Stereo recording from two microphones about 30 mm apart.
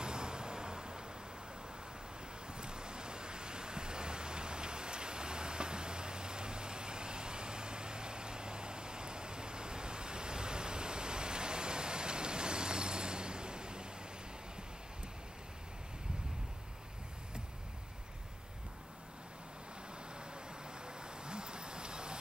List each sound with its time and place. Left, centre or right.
0.0 s vehicle: right
2.5 s waves: right
20.8 s vehicle: right